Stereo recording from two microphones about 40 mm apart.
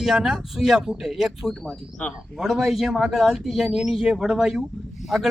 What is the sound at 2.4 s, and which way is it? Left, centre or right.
Speech, centre.